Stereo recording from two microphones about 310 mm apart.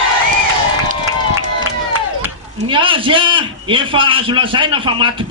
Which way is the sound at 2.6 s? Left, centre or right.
Centre.